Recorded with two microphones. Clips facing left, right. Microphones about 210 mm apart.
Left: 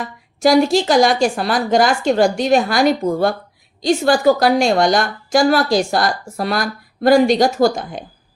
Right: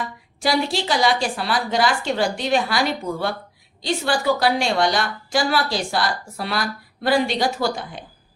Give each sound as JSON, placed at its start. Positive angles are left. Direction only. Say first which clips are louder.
{"t": 0.0, "sound": "a woman's voice", "louder": "left 8 dB", "side_deg": 45}